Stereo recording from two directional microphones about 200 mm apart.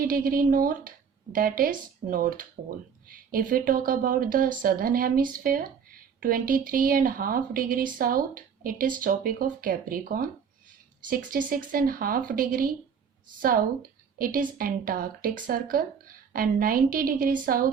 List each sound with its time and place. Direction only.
0.0 s a woman's voice: 45° right (ahead or behind)